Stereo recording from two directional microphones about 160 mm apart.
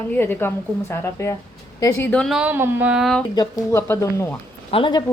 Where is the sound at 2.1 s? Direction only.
Centre (ahead or behind).